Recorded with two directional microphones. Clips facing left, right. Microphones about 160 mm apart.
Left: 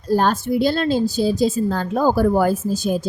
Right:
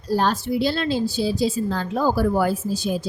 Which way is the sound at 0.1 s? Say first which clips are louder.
Left 3 dB; 50° left (ahead or behind).